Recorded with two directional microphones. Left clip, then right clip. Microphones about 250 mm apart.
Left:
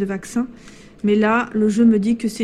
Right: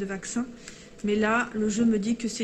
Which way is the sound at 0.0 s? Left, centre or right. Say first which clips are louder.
Left 8 dB; left.